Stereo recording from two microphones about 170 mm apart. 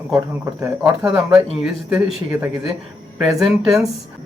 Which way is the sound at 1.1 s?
5° right (ahead or behind).